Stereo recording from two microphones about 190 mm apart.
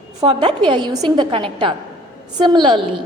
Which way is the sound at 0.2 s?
25° right (ahead or behind).